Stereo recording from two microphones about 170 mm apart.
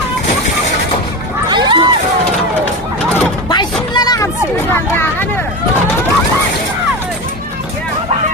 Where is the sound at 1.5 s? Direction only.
25° right (ahead or behind).